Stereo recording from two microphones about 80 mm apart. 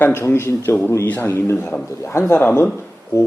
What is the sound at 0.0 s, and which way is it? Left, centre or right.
A man's voice, left.